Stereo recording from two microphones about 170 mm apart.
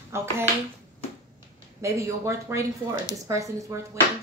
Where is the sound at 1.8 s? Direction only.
15° right (ahead or behind).